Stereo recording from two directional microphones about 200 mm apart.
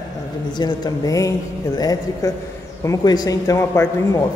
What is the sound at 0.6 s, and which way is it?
A man's voice, 20° left (ahead or behind).